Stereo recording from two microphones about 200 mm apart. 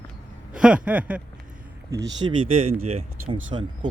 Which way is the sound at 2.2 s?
25° right (ahead or behind).